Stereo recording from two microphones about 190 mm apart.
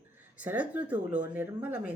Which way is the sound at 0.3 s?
10° right (ahead or behind).